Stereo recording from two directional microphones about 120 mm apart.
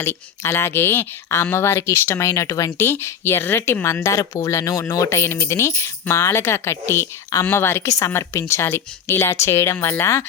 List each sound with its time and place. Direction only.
0.0 s speech: 20° left (ahead or behind)